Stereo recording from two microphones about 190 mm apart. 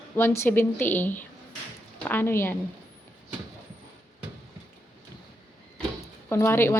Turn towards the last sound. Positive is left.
turn(degrees=10)  # may be behind; listen again after turning